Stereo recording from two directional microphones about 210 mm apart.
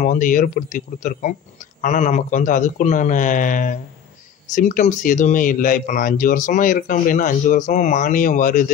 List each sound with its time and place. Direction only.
0.0 s speech: 40° left (ahead or behind)